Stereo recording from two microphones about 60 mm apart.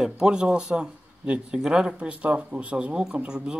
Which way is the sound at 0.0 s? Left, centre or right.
Centre.